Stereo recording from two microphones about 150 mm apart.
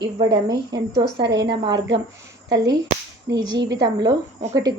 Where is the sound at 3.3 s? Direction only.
30° right (ahead or behind).